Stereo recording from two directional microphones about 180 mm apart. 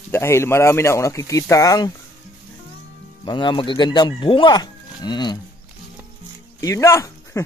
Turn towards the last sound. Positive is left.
turn(degrees=15)  # may be behind; listen again after turning